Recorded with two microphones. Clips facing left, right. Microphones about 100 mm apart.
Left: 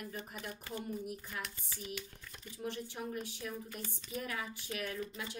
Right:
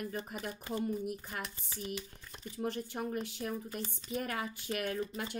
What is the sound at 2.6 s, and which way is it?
A woman's voice, 50° right (ahead or behind).